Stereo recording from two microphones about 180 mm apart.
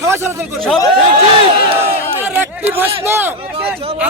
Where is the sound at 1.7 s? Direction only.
10° right (ahead or behind).